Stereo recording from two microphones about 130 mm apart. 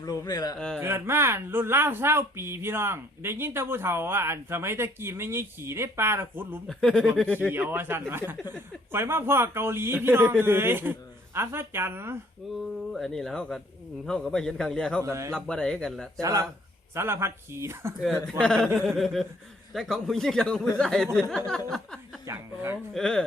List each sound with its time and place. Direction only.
0.0 s a man's voice: 30° left (ahead or behind)
0.8 s speech: 20° right (ahead or behind)
6.7 s a man's voice: 5° left (ahead or behind)
7.5 s a man's voice: 15° right (ahead or behind)
12.9 s a man's voice: 5° left (ahead or behind)
15.0 s speech: 20° right (ahead or behind)
15.3 s a man's voice: 5° left (ahead or behind)
16.2 s speech: 25° right (ahead or behind)
18.0 s a man's voice: 5° left (ahead or behind)
22.3 s a man's voice: 20° right (ahead or behind)
23.0 s a man's voice: 5° left (ahead or behind)